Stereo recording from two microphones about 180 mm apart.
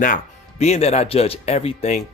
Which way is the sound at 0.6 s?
35° left (ahead or behind).